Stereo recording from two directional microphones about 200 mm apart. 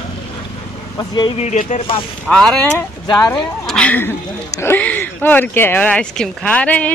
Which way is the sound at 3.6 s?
5° left (ahead or behind).